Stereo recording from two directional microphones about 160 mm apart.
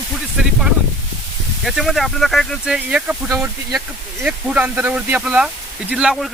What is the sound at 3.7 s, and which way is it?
Speech, 5° right (ahead or behind).